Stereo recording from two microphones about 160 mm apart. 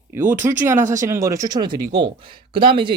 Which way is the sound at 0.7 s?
50° right (ahead or behind).